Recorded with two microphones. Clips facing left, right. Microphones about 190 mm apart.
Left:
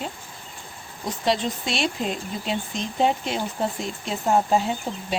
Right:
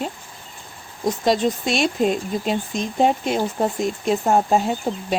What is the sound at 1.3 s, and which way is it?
Speech, 45° right (ahead or behind).